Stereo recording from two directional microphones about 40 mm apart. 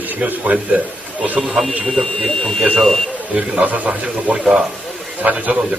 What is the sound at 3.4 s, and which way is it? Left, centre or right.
A man's voice, right.